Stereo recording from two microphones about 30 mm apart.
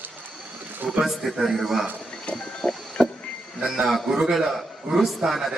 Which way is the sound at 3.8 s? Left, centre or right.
Centre.